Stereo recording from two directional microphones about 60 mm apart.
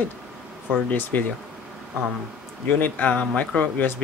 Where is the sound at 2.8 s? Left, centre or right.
Left.